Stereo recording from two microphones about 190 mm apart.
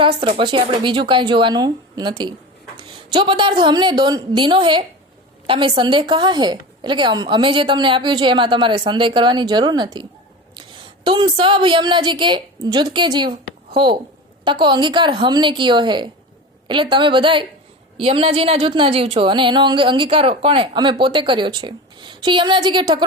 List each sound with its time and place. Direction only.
0.0 s a woman's voice: 25° right (ahead or behind)